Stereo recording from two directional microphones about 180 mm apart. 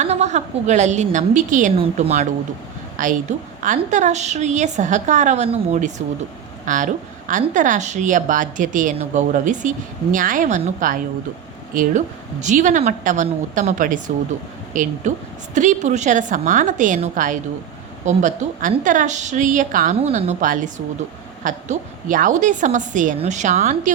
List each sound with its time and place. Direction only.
0.0 s a woman's voice: 40° right (ahead or behind)
3.0 s a woman's voice: 45° right (ahead or behind)